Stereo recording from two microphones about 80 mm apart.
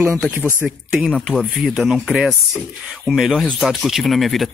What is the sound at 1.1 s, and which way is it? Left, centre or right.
Speech, centre.